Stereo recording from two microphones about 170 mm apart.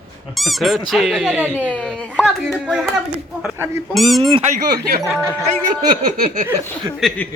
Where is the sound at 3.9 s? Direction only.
Centre (ahead or behind).